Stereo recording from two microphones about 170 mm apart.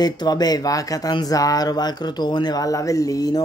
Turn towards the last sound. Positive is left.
turn(degrees=20)  # may be behind; listen again after turning